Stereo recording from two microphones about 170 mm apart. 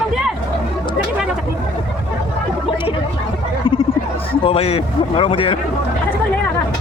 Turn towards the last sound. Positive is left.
turn(degrees=30)  # may be behind; listen again after turning